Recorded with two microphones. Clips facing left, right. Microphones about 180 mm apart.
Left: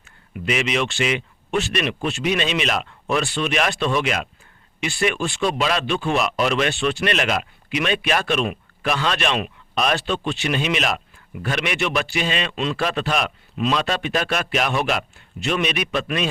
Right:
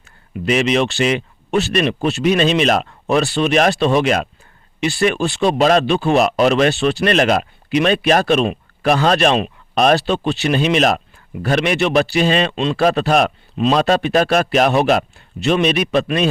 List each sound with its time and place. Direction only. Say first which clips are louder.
0.0 s speech: right 6 dB; 35° right (ahead or behind)